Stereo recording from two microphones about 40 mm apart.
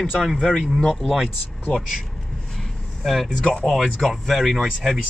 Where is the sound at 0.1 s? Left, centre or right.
Centre.